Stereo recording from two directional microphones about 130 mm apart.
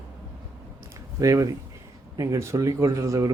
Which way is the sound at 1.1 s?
25° right (ahead or behind).